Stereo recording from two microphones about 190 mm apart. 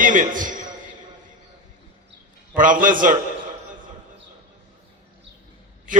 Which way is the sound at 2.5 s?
45° right (ahead or behind).